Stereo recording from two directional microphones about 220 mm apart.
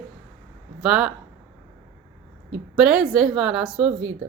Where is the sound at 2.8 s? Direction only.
5° right (ahead or behind).